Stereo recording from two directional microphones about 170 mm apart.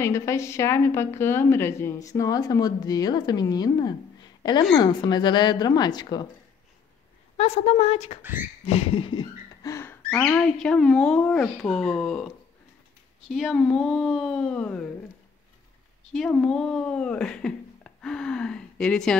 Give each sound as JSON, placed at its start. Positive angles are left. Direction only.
{"t": 0.0, "sound": "a woman's voice", "side_deg": 15}
{"t": 7.3, "sound": "speech", "side_deg": 40}
{"t": 8.2, "sound": "speech", "side_deg": -10}
{"t": 8.6, "sound": "a woman's voice", "side_deg": 35}
{"t": 13.3, "sound": "a woman's voice", "side_deg": 0}
{"t": 16.1, "sound": "speech", "side_deg": 5}